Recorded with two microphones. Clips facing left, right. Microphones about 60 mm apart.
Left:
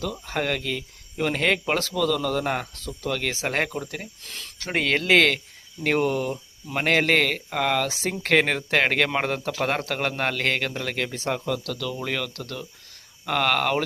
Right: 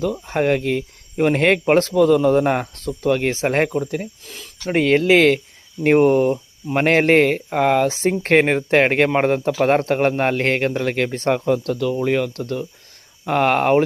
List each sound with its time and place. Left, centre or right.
0.0 s speech: right
0.6 s speech: right
3.7 s speech: centre
5.8 s speech: right